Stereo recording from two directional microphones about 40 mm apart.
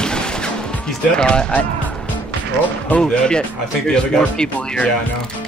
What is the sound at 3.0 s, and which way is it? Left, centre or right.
Speech, left.